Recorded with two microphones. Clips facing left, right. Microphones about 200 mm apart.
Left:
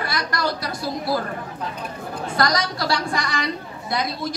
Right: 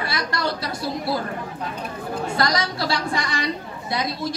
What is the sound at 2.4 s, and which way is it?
A woman's voice, 25° right (ahead or behind).